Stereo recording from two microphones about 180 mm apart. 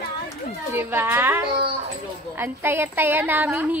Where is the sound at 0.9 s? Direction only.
10° right (ahead or behind).